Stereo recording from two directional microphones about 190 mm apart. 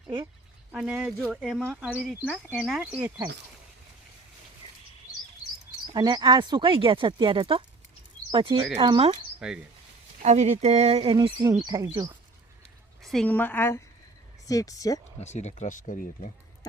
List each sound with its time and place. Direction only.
0.7 s speech: 5° right (ahead or behind)
5.9 s speech: 20° right (ahead or behind)
10.2 s speech: 35° right (ahead or behind); by 12.1 s 15° right (ahead or behind)
13.0 s a woman's voice: centre (ahead or behind); by 15.0 s 20° left (ahead or behind)
15.2 s speech: 35° left (ahead or behind)